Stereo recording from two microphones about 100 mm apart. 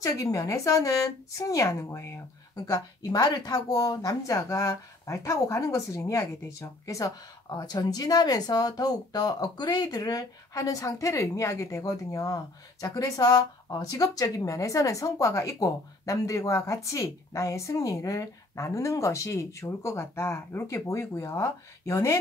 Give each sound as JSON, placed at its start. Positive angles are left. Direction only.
{"t": 0.0, "sound": "speech", "side_deg": 35}